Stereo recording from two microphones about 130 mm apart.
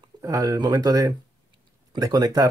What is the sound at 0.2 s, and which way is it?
Speech, 25° right (ahead or behind).